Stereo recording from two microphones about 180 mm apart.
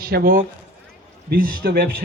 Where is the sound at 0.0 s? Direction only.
55° right (ahead or behind).